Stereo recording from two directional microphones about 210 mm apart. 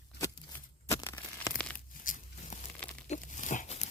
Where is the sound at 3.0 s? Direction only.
35° left (ahead or behind).